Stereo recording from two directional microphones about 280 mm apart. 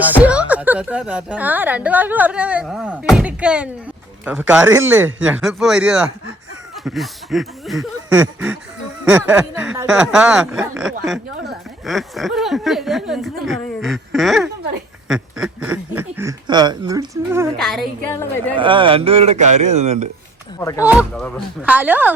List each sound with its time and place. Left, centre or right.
0.2 s a woman's voice: centre
17.6 s a woman's voice: centre
18.5 s a man's voice: centre
20.6 s speech: centre
20.8 s a woman's voice: centre